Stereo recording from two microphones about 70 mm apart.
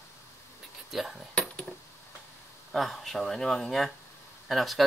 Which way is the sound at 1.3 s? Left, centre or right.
Centre.